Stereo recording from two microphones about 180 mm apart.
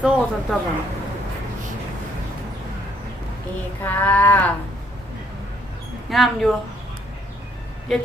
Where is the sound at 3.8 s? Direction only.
10° left (ahead or behind).